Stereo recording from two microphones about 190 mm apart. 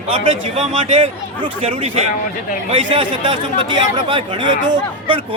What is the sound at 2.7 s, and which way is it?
Speech, 25° right (ahead or behind).